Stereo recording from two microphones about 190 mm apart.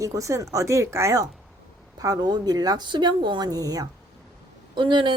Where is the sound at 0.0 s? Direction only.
15° right (ahead or behind).